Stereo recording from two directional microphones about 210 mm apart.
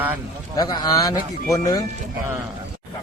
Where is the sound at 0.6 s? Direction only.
15° left (ahead or behind).